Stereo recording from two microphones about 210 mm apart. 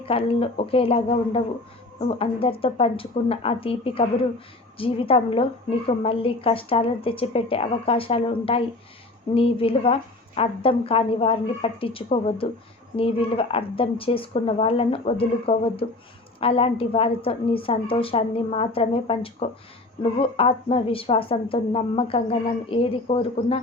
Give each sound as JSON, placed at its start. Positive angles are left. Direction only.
{"t": 0.0, "sound": "a woman's voice", "side_deg": 25}